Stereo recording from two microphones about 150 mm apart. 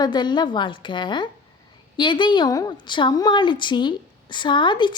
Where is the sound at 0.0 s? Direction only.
30° left (ahead or behind).